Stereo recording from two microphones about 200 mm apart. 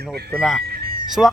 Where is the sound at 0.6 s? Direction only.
50° right (ahead or behind).